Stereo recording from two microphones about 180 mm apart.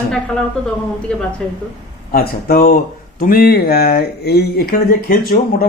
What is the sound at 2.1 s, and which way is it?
Speech, 55° left (ahead or behind).